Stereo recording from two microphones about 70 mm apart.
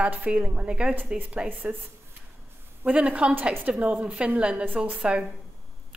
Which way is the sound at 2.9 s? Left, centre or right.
Centre.